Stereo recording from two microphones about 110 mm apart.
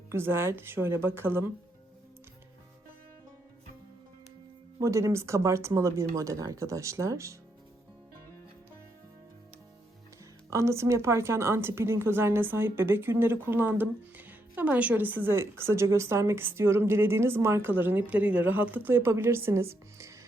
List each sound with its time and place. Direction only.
0.1 s a woman's voice: 20° right (ahead or behind)
4.8 s a woman's voice: 25° right (ahead or behind)
10.5 s a woman's voice: 25° right (ahead or behind)